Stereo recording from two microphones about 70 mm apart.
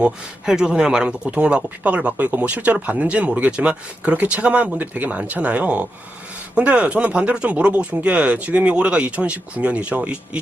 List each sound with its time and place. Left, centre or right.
0.0 s speech: centre